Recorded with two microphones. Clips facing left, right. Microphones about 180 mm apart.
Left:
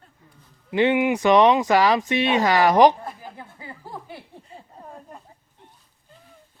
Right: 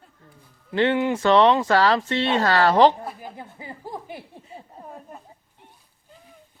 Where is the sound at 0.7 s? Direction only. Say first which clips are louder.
Left 2 dB; 15° left (ahead or behind).